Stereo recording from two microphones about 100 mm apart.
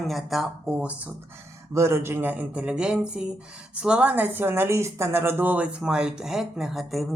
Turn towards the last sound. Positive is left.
turn(degrees=0)  # may be behind; listen again after turning